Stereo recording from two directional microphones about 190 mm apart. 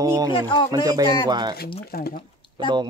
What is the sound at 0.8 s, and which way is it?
Speech, 20° right (ahead or behind).